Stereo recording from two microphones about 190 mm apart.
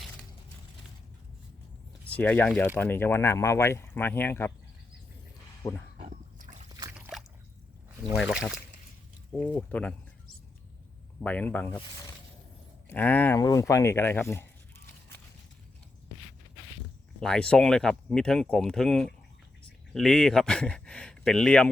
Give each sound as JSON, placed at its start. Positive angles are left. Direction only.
{"t": 2.1, "sound": "speech", "side_deg": 10}
{"t": 5.6, "sound": "speech", "side_deg": 15}
{"t": 6.9, "sound": "a sound", "side_deg": -5}
{"t": 8.1, "sound": "speech", "side_deg": 0}
{"t": 9.3, "sound": "speech", "side_deg": 10}
{"t": 11.2, "sound": "speech", "side_deg": 10}
{"t": 12.9, "sound": "speech", "side_deg": 10}
{"t": 17.2, "sound": "speech", "side_deg": 5}